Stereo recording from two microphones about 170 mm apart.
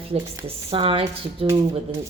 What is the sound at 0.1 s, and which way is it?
A woman's voice, 35° right (ahead or behind).